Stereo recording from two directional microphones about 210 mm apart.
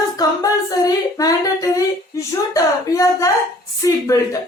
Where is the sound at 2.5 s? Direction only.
15° left (ahead or behind).